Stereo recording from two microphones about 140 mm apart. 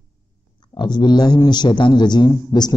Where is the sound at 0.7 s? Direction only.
30° left (ahead or behind).